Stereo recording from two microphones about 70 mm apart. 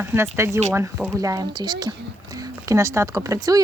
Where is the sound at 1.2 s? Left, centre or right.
Right.